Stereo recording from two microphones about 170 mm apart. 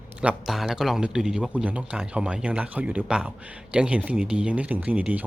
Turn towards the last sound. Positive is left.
turn(degrees=-10)  # may be behind; listen again after turning